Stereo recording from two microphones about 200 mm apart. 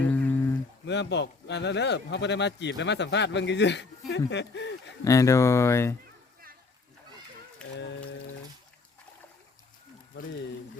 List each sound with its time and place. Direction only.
0.0 s livestock: 10° left (ahead or behind)
0.9 s a man's voice: 60° left (ahead or behind)
5.0 s speech: 15° left (ahead or behind)